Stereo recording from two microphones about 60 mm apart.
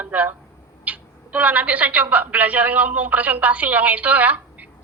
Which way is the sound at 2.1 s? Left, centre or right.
Right.